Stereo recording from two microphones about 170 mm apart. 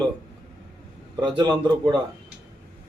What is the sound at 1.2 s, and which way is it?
Speech, 25° right (ahead or behind).